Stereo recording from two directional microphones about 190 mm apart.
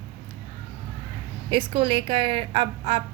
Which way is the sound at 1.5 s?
25° right (ahead or behind).